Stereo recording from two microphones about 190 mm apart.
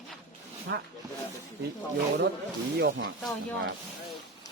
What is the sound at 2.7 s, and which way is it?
Speech, 65° right (ahead or behind).